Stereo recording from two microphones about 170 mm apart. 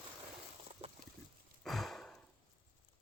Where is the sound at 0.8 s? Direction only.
35° right (ahead or behind).